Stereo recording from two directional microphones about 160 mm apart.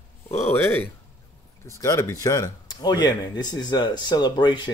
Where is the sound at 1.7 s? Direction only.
20° left (ahead or behind).